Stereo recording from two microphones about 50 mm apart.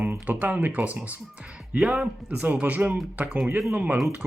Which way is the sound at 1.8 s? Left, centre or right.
Right.